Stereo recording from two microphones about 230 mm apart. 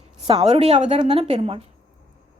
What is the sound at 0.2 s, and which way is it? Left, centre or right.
A woman's voice, right.